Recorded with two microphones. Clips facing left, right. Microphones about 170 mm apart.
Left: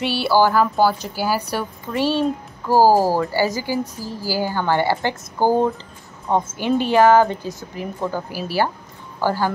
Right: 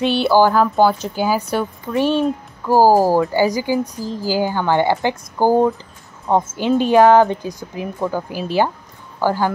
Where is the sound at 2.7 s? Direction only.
15° right (ahead or behind).